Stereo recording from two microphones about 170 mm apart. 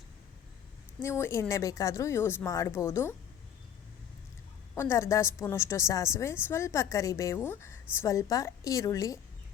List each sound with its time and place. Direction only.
1.0 s a woman's voice: 15° left (ahead or behind)
4.7 s a woman's voice: 15° left (ahead or behind)